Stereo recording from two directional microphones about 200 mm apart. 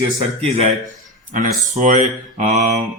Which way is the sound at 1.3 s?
40° right (ahead or behind).